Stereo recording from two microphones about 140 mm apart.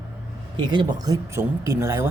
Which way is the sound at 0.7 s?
30° right (ahead or behind).